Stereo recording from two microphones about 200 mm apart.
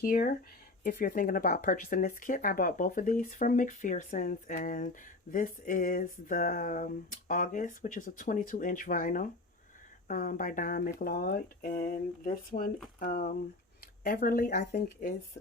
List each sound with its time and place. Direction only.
0.0 s speech: 45° left (ahead or behind)